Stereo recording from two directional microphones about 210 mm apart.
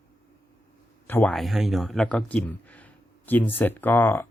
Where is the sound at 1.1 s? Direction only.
5° left (ahead or behind).